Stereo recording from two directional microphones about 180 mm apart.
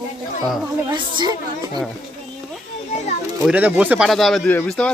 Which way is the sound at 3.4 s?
10° right (ahead or behind).